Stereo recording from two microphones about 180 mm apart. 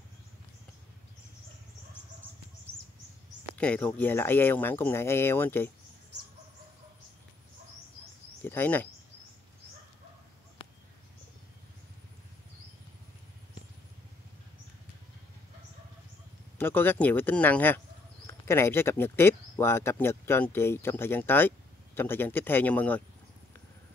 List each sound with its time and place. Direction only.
3.4 s speech: 10° left (ahead or behind)
8.5 s speech: 10° left (ahead or behind)
16.5 s speech: 10° left (ahead or behind)